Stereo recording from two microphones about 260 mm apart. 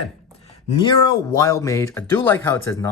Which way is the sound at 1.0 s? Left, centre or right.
Centre.